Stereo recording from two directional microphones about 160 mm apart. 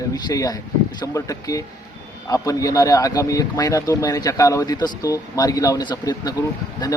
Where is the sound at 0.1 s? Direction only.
20° left (ahead or behind).